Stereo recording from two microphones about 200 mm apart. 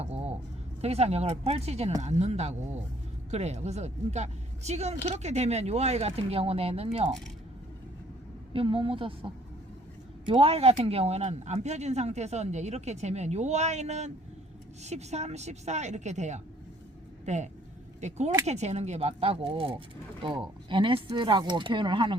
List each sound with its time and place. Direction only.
0.0 s a sound: 30° right (ahead or behind)
0.8 s speech: 30° right (ahead or behind)
8.5 s speech: 25° right (ahead or behind)